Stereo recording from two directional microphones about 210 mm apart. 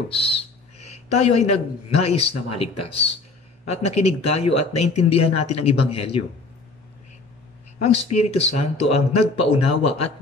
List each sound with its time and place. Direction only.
0.1 s speech: 25° left (ahead or behind)
7.8 s speech: 30° left (ahead or behind)